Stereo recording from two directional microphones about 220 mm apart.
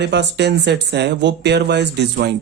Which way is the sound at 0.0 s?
50° right (ahead or behind).